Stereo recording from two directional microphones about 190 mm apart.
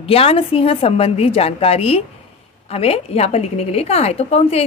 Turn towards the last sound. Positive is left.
turn(degrees=35)  # may be behind; listen again after turning